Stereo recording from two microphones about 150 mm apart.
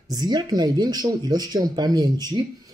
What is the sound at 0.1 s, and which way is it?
Speech, 25° right (ahead or behind).